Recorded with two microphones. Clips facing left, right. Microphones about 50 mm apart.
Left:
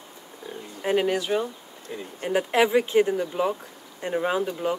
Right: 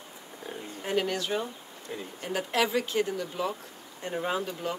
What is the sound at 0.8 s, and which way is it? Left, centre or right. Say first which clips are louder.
Speech: left 6 dB; left.